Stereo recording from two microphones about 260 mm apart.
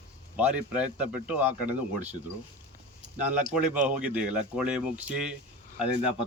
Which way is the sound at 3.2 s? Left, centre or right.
Centre.